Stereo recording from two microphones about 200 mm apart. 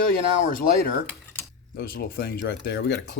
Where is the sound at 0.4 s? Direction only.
45° left (ahead or behind).